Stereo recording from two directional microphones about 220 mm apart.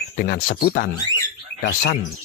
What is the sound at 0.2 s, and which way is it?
Speech, 40° left (ahead or behind).